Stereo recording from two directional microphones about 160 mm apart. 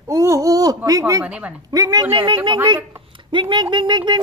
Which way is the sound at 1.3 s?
10° right (ahead or behind).